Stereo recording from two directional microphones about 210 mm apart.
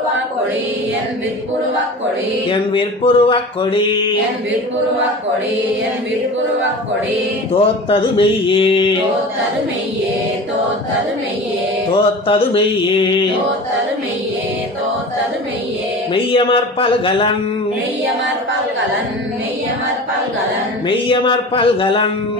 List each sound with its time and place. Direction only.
2.7 s mantra: 25° left (ahead or behind)
7.5 s mantra: 25° left (ahead or behind)
11.9 s mantra: 25° left (ahead or behind)
16.1 s mantra: 25° left (ahead or behind)
21.1 s mantra: 25° left (ahead or behind)